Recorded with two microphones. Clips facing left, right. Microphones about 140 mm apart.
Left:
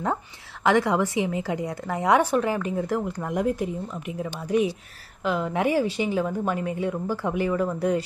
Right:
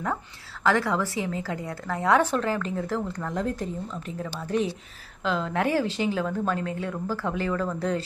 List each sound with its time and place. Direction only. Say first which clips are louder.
0.7 s a woman's voice: left 3 dB; 20° left (ahead or behind)